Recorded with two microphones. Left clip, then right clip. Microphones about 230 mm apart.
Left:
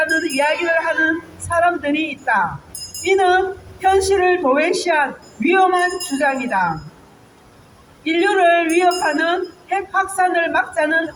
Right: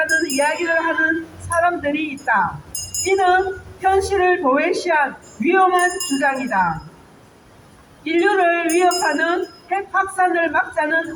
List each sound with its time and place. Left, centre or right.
0.3 s a sound: left
3.0 s a woman's voice: left
8.0 s a woman's voice: left